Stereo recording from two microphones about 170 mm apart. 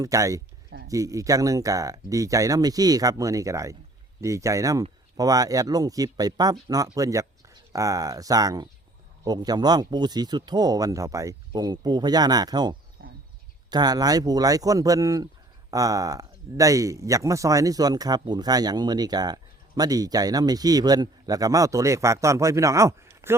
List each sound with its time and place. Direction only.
0.0 s speech: 20° right (ahead or behind)